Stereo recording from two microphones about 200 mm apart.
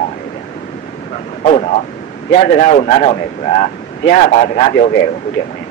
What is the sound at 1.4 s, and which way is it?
Speech, 35° left (ahead or behind).